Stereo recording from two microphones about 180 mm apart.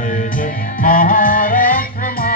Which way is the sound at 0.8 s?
50° left (ahead or behind).